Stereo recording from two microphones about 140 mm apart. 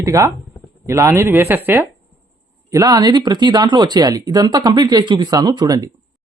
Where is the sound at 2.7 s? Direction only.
25° right (ahead or behind).